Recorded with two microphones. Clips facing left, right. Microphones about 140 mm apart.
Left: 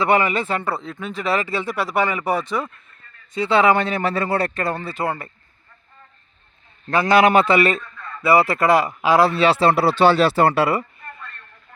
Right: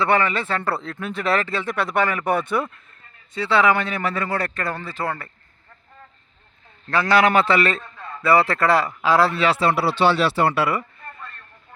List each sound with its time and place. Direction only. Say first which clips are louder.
0.0 s a man's voice: left 2 dB; 15° left (ahead or behind)
0.6 s speech: even; centre (ahead or behind)
3.3 s speech: left 2 dB; 20° left (ahead or behind)
6.9 s a man's voice: left 3 dB; 20° left (ahead or behind)
9.6 s speech: left 4 dB; 40° left (ahead or behind)